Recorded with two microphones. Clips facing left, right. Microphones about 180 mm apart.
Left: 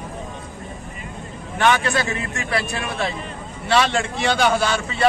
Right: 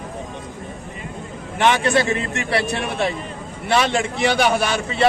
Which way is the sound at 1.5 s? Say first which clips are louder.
Right 2 dB; 20° right (ahead or behind).